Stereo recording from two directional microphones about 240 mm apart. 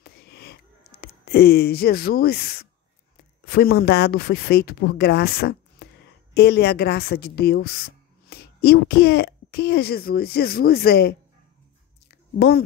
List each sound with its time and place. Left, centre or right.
0.0 s a sound: left
1.0 s a woman's voice: left
12.4 s a woman's voice: left